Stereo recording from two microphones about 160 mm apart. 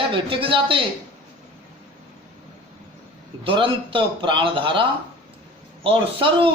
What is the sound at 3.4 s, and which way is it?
Speech, 35° right (ahead or behind).